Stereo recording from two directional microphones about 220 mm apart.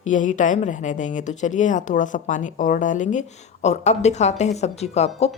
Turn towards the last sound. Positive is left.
turn(degrees=30)  # may be behind; listen again after turning